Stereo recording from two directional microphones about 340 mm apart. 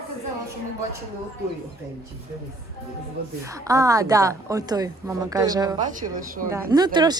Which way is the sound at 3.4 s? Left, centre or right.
Centre.